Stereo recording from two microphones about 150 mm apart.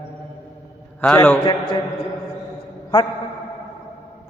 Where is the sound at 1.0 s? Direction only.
10° left (ahead or behind).